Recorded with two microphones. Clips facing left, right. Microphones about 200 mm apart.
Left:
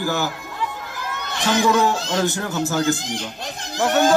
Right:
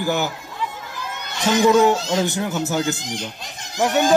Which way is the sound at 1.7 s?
20° right (ahead or behind).